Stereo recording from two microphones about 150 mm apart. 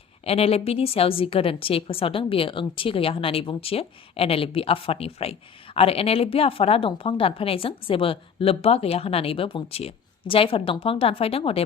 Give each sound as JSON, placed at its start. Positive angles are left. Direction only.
{"t": 0.3, "sound": "a woman's voice", "side_deg": 40}